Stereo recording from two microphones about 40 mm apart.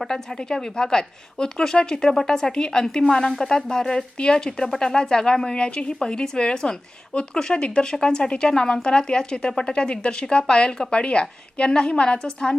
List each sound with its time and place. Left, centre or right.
0.0 s a woman's voice: centre